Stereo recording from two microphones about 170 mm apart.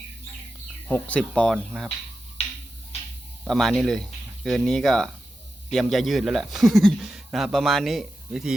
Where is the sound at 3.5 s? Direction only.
5° left (ahead or behind).